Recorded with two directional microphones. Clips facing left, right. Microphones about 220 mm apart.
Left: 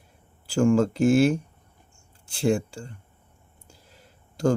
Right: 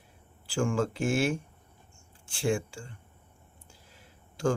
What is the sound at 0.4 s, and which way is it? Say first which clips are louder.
Speech: left 8 dB; 40° left (ahead or behind).